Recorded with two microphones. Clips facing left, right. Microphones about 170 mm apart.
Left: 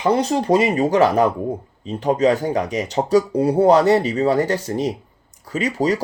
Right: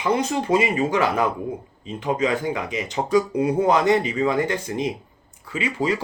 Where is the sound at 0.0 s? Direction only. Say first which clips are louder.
Left 4 dB; 40° left (ahead or behind).